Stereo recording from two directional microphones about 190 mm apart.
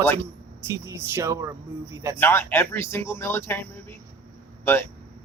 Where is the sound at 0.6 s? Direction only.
15° right (ahead or behind).